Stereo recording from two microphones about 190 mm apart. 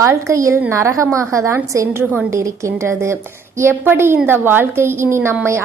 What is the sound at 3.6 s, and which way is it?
A woman's voice, 10° right (ahead or behind).